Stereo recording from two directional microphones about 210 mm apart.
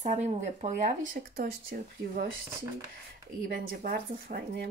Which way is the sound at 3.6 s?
45° right (ahead or behind).